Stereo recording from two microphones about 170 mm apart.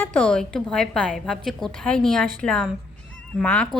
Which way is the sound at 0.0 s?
5° left (ahead or behind).